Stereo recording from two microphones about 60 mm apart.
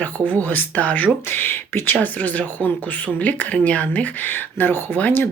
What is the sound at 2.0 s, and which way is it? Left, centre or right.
Speech, left.